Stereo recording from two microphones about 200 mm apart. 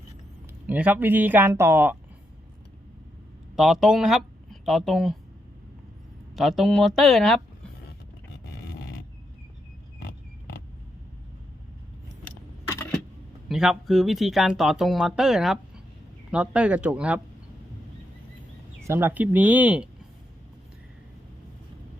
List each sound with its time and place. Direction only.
0.7 s speech: 10° right (ahead or behind)
3.5 s speech: centre (ahead or behind)
6.3 s speech: centre (ahead or behind)
10.0 s vehicle: 50° left (ahead or behind)
12.6 s a sound: 10° left (ahead or behind)
13.5 s speech: 5° right (ahead or behind)
18.9 s speech: 10° right (ahead or behind)